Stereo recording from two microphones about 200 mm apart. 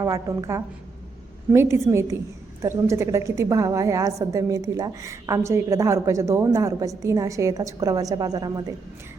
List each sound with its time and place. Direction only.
0.0 s a woman's voice: 15° right (ahead or behind)